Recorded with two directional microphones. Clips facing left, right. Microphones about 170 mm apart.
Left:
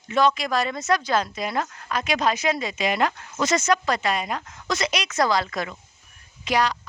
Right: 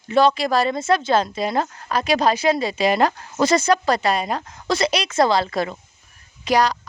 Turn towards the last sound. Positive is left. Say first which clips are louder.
# right 4 dB
turn(degrees=-40)  # may be behind; listen again after turning